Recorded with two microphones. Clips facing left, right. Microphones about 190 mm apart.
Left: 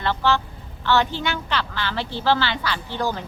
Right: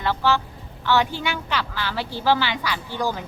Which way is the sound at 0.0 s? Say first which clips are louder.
Even; 10° right (ahead or behind).